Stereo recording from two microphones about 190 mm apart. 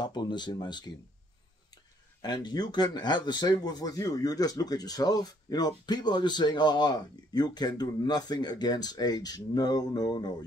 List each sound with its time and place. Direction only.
0.0 s speech: 20° left (ahead or behind)
2.2 s speech: 20° left (ahead or behind)